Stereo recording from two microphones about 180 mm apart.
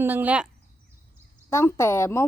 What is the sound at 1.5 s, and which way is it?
Speech, 15° left (ahead or behind).